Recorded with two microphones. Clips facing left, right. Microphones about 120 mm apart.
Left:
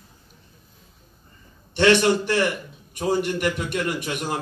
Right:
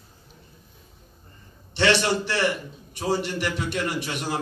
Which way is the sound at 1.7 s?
50° left (ahead or behind).